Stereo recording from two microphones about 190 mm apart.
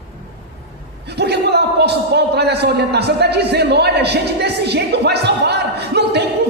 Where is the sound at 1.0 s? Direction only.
60° right (ahead or behind).